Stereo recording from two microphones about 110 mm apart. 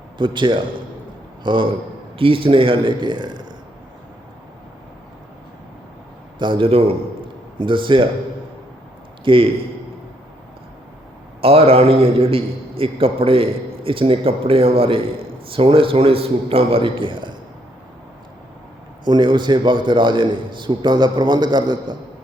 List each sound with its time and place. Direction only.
0.2 s a man's voice: 45° right (ahead or behind)
6.4 s a man's voice: 50° right (ahead or behind)
7.6 s a man's voice: 50° right (ahead or behind)
9.2 s a man's voice: 50° right (ahead or behind)
11.3 s a man's voice: 60° right (ahead or behind)
19.0 s a man's voice: 45° right (ahead or behind)